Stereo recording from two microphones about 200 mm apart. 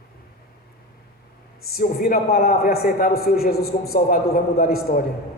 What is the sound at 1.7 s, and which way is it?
A man's voice, 45° left (ahead or behind).